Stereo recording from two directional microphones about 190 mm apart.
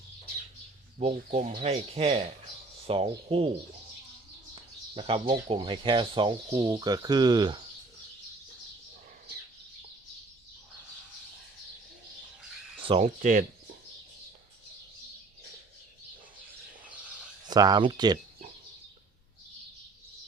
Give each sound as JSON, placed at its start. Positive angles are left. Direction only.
{"t": 0.9, "sound": "speech", "side_deg": -35}
{"t": 4.5, "sound": "speech", "side_deg": -30}
{"t": 12.8, "sound": "a sound", "side_deg": -25}
{"t": 13.1, "sound": "speech", "side_deg": -45}
{"t": 17.5, "sound": "speech", "side_deg": -20}